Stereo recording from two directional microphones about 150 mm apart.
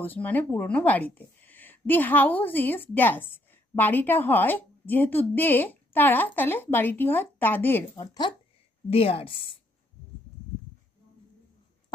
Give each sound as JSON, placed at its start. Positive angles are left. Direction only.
{"t": 0.0, "sound": "speech", "side_deg": 10}
{"t": 7.9, "sound": "speech", "side_deg": 25}
{"t": 8.9, "sound": "a woman's voice", "side_deg": 40}